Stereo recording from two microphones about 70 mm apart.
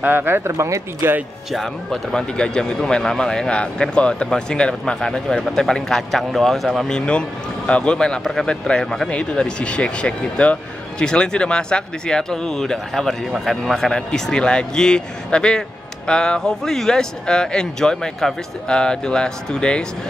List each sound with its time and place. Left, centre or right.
0.0 s speech: right
1.5 s a man's voice: centre
7.1 s a man's voice: centre